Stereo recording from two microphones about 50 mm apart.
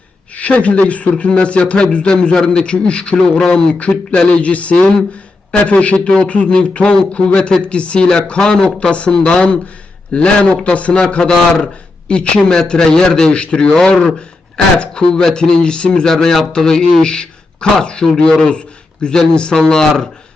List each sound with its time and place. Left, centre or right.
0.3 s a man's voice: left
11.3 s a man's voice: centre
12.0 s a man's voice: centre
16.1 s a man's voice: centre
19.3 s a man's voice: centre